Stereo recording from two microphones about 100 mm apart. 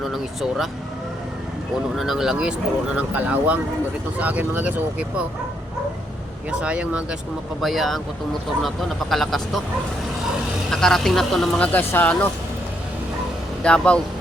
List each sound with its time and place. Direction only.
0.0 s speech: 5° right (ahead or behind)
2.0 s speech: 5° right (ahead or behind)
6.5 s speech: 10° right (ahead or behind)
7.6 s speech: centre (ahead or behind)
10.7 s speech: 5° left (ahead or behind)
11.6 s speech: 20° left (ahead or behind)
13.6 s speech: 10° left (ahead or behind)